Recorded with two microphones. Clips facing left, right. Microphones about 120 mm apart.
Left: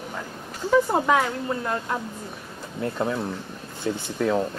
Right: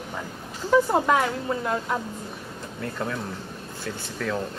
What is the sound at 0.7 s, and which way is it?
Speech, centre (ahead or behind).